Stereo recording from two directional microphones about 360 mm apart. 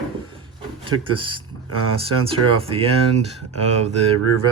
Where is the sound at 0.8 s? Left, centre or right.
Centre.